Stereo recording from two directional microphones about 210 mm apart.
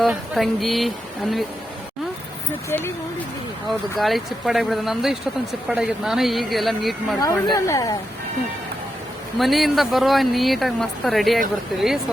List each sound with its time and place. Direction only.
0.0 s speech: centre (ahead or behind)
2.6 s a woman's voice: 10° left (ahead or behind)
3.7 s speech: centre (ahead or behind)
7.5 s a woman's voice: 15° left (ahead or behind)
9.4 s speech: centre (ahead or behind)